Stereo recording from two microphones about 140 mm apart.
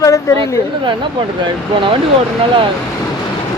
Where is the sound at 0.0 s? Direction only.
20° left (ahead or behind).